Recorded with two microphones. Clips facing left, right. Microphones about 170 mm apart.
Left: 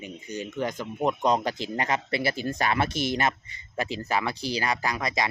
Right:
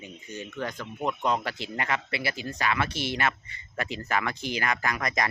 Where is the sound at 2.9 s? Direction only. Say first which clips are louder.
Left 3 dB; 45° left (ahead or behind).